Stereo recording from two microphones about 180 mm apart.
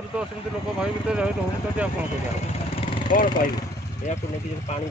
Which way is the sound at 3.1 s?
50° left (ahead or behind).